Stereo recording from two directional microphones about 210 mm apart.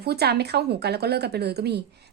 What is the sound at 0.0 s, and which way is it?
Speech, 50° right (ahead or behind).